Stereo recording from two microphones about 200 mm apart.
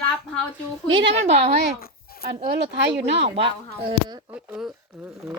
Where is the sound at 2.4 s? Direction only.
55° right (ahead or behind).